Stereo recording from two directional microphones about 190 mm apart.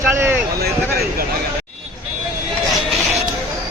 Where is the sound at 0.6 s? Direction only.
55° right (ahead or behind).